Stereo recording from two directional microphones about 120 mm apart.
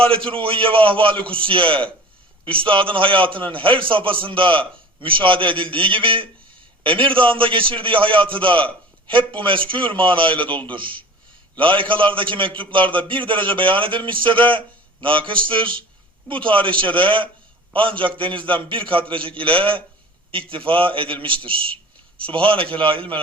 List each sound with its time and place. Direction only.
0.1 s a man's voice: 50° right (ahead or behind)